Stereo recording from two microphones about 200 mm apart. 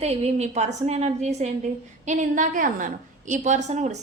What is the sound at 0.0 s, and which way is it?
Speech, 30° right (ahead or behind).